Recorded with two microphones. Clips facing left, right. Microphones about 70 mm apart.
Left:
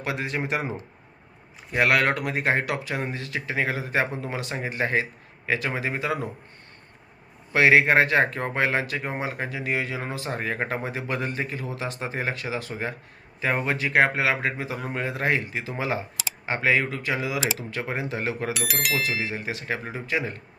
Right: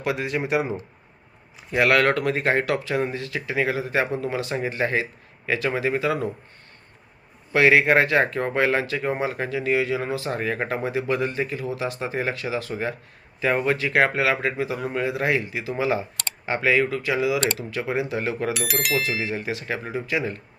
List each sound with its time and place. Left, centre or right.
0.0 s a man's voice: left
1.7 s speech: left
7.5 s a man's voice: left
18.5 s speech: centre
19.4 s speech: left